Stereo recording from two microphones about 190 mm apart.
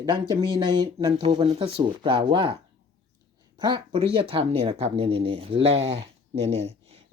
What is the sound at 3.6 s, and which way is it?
Speech, 25° right (ahead or behind).